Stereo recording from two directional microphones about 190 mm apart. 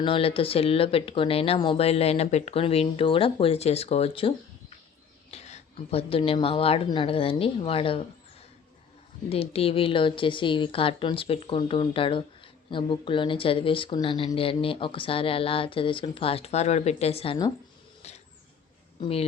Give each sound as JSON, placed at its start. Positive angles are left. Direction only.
{"t": 0.0, "sound": "speech", "side_deg": 30}
{"t": 9.3, "sound": "speech", "side_deg": 30}
{"t": 18.0, "sound": "a sound", "side_deg": 35}
{"t": 18.9, "sound": "speech", "side_deg": 30}